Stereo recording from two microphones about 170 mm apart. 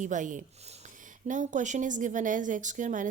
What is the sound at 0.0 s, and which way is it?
Speech, 50° right (ahead or behind).